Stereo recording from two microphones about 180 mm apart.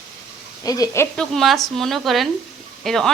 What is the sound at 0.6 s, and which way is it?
Speech, 20° left (ahead or behind).